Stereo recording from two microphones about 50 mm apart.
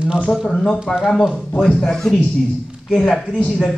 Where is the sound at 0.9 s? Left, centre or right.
Centre.